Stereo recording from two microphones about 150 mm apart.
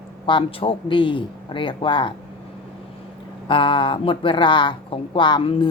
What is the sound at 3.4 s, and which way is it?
A woman's voice, 35° left (ahead or behind).